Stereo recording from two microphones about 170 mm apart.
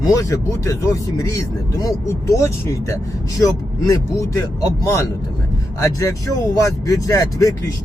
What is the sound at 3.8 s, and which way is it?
Speech, 20° left (ahead or behind).